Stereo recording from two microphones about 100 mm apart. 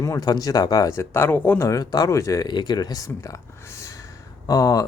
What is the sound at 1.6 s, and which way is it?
Speech, 40° left (ahead or behind).